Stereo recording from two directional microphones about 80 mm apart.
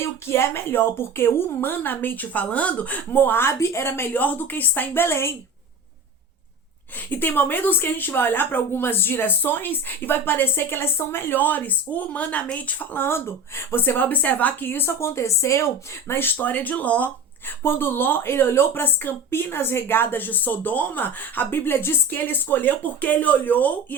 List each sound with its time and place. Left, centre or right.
0.0 s a woman's voice: left
7.1 s a woman's voice: left